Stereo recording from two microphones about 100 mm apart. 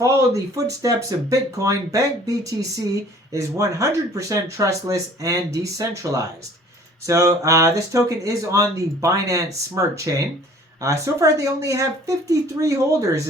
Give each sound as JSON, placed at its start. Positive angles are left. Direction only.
{"t": 0.0, "sound": "speech", "side_deg": -30}